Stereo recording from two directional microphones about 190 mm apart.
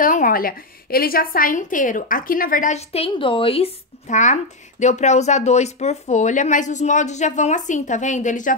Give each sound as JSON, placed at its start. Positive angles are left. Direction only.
{"t": 0.0, "sound": "a woman's voice", "side_deg": 45}